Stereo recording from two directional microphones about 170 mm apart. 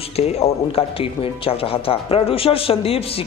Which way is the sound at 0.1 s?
40° left (ahead or behind).